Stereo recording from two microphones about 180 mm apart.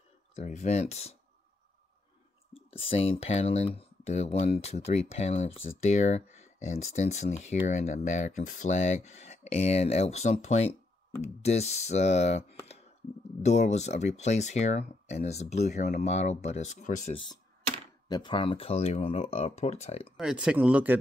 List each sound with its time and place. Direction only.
0.4 s speech: 40° left (ahead or behind)
2.5 s speech: 30° left (ahead or behind)
17.1 s speech: 25° left (ahead or behind)
20.2 s speech: 5° right (ahead or behind)